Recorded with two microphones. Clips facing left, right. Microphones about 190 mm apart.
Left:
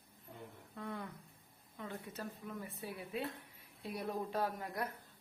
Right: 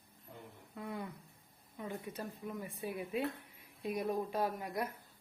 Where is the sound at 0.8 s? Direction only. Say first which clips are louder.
Right 2 dB; 10° right (ahead or behind).